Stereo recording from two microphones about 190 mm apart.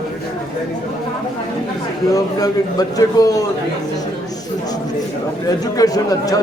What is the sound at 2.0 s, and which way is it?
A man's voice, 20° left (ahead or behind).